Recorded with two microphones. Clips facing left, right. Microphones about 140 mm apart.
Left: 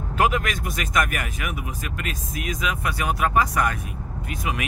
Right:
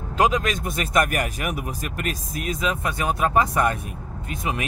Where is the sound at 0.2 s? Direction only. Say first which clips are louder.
Right 2 dB; 20° right (ahead or behind).